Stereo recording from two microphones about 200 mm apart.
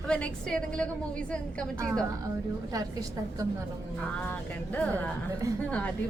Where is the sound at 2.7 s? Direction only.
15° right (ahead or behind).